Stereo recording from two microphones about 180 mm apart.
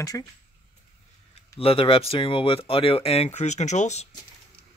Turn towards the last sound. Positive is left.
turn(degrees=40)  # may be behind; listen again after turning